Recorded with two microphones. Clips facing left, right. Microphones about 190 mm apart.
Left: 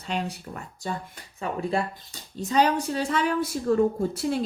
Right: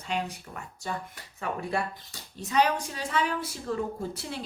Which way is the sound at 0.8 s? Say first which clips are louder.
Left 2 dB; 25° left (ahead or behind).